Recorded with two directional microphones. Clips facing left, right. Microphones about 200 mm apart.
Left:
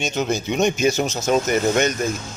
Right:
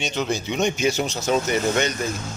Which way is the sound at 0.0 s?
45° left (ahead or behind).